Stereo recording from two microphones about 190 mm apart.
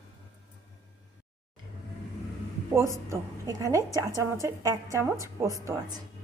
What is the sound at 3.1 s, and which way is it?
A woman's voice, 15° right (ahead or behind).